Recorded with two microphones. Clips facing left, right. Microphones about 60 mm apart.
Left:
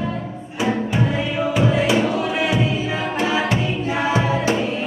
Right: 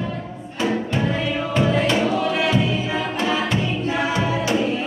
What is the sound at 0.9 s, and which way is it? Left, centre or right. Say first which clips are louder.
Music: left 1 dB; centre.